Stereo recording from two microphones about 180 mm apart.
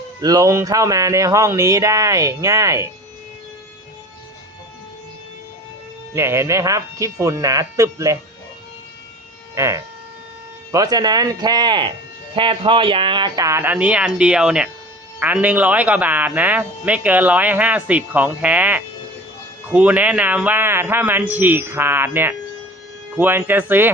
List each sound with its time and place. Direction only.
0.2 s speech: 20° right (ahead or behind)
6.1 s speech: 15° right (ahead or behind)
9.6 s speech: 15° right (ahead or behind)